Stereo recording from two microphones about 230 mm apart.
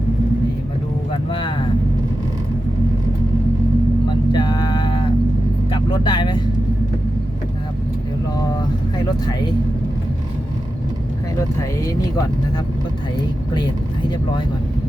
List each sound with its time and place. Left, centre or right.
1.3 s vehicle: left
4.3 s a sound: centre
5.7 s vehicle: left
9.0 s music: centre